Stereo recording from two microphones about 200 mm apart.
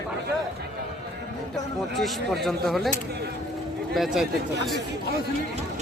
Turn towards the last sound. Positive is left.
turn(degrees=0)  # may be behind; listen again after turning